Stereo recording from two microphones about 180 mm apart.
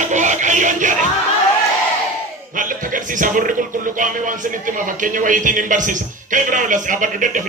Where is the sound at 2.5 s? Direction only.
50° right (ahead or behind).